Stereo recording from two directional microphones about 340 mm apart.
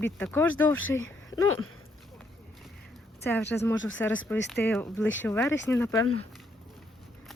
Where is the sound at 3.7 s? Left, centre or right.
Left.